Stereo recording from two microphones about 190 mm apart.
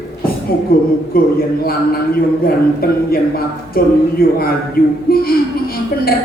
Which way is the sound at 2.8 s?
50° left (ahead or behind).